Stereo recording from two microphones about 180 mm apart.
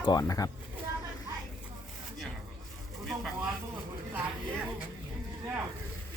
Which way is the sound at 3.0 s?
Centre (ahead or behind).